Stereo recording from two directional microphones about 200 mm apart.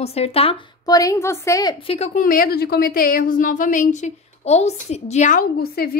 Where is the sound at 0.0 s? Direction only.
30° left (ahead or behind).